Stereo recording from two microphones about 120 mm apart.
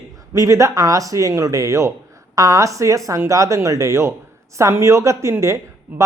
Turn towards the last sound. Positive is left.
turn(degrees=-15)  # may be behind; listen again after turning